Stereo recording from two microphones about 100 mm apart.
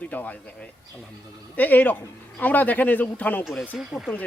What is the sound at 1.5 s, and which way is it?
Speech, 15° left (ahead or behind).